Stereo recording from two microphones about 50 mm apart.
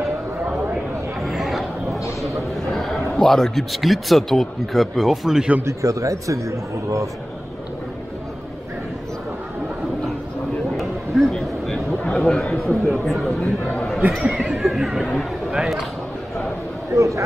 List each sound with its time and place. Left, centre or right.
1.2 s chatter: centre
2.2 s a sound: centre
3.2 s speech: centre
5.6 s a man's voice: right
10.8 s a sound: centre
12.1 s a man's voice: centre
16.9 s a man's voice: right